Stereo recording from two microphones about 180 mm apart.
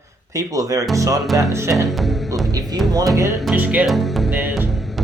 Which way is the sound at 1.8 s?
Centre (ahead or behind).